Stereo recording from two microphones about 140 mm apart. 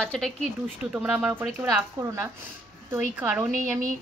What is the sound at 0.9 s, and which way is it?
Speech, 10° right (ahead or behind).